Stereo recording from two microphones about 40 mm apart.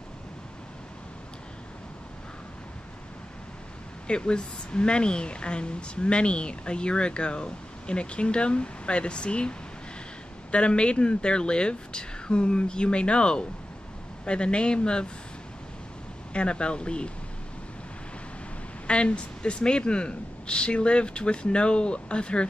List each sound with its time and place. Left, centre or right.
4.1 s speech: left
16.3 s speech: left
18.9 s speech: left